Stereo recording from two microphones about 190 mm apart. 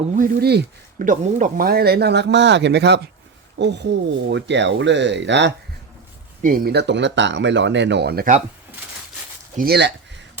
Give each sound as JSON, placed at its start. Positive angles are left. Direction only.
{"t": 0.2, "sound": "speech", "side_deg": -50}
{"t": 6.4, "sound": "speech", "side_deg": -50}
{"t": 9.6, "sound": "speech", "side_deg": -60}